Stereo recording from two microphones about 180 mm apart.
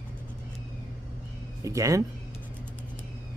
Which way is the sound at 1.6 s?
20° right (ahead or behind).